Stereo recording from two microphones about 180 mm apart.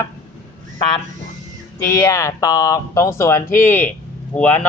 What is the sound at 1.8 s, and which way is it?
Speech, 15° left (ahead or behind).